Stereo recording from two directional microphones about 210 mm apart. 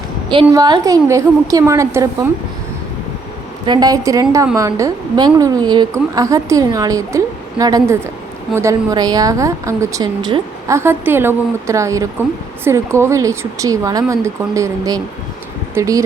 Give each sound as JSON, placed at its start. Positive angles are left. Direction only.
{"t": 0.3, "sound": "a woman's voice", "side_deg": -20}
{"t": 3.7, "sound": "a woman's voice", "side_deg": -20}